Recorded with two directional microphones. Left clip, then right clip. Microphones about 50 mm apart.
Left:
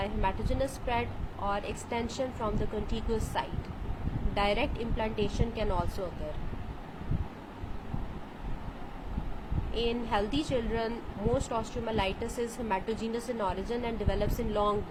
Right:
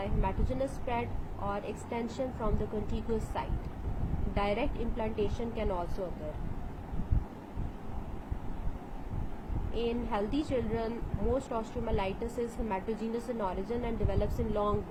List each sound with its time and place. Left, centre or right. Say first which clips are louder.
0.0 s a woman's voice: left 3 dB; left
9.7 s a woman's voice: left 3 dB; centre